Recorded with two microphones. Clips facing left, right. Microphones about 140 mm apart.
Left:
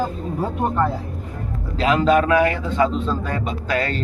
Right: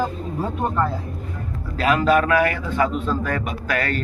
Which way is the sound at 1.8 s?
20° left (ahead or behind).